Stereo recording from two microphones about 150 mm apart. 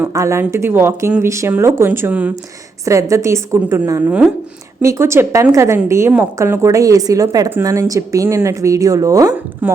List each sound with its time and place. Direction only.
0.0 s a woman's voice: 20° right (ahead or behind)